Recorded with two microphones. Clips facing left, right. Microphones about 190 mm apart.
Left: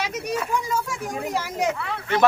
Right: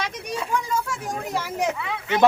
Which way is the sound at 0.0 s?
10° left (ahead or behind).